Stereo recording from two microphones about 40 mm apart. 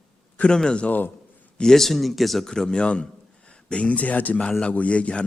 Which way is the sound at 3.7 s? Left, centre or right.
Left.